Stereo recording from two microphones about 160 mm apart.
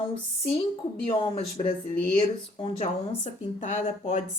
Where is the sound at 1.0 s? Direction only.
35° left (ahead or behind).